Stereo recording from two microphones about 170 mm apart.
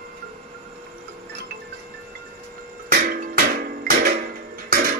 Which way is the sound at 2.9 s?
55° right (ahead or behind).